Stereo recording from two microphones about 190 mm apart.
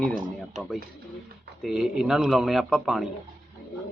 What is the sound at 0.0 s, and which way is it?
Speech, centre (ahead or behind).